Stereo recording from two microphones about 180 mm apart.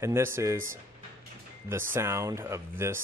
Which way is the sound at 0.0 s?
15° right (ahead or behind).